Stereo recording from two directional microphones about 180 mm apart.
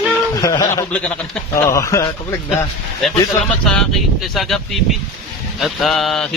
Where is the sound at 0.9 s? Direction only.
5° left (ahead or behind).